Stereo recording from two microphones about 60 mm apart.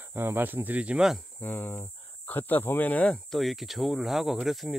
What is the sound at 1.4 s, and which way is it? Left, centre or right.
Speech, left.